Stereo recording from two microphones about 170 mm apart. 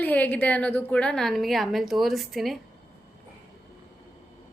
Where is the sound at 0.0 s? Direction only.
10° left (ahead or behind).